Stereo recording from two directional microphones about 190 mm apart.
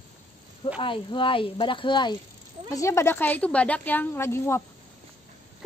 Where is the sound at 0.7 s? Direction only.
25° left (ahead or behind).